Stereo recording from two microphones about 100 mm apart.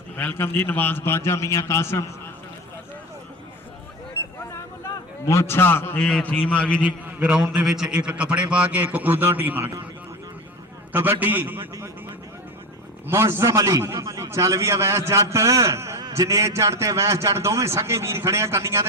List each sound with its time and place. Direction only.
0.2 s a man's voice: 20° left (ahead or behind)
4.5 s a sound: 25° left (ahead or behind)
6.0 s a man's voice: 10° left (ahead or behind)
6.8 s a man's voice: 15° right (ahead or behind)
7.3 s a man's voice: 5° right (ahead or behind); by 9.6 s 20° right (ahead or behind)
10.9 s a man's voice: 20° right (ahead or behind)
13.1 s a man's voice: 25° right (ahead or behind)